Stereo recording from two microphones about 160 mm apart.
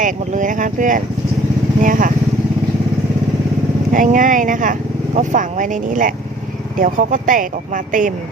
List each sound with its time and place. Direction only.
0.0 s speech: 55° right (ahead or behind)
3.9 s speech: 55° right (ahead or behind)